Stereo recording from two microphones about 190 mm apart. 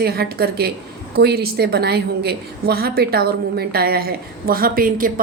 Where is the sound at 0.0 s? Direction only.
55° right (ahead or behind).